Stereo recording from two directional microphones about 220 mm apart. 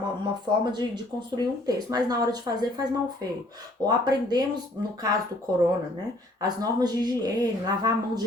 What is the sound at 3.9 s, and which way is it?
Speech, 20° right (ahead or behind).